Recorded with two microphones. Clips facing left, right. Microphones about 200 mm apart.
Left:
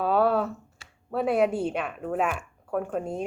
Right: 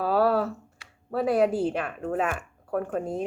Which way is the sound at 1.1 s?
5° right (ahead or behind).